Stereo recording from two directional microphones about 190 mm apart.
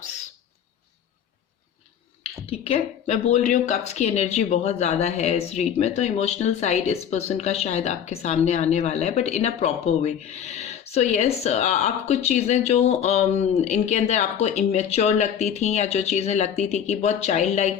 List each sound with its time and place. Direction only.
2.2 s speech: 30° left (ahead or behind)